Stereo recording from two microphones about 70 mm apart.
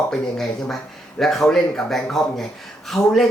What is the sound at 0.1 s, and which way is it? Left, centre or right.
Speech, centre.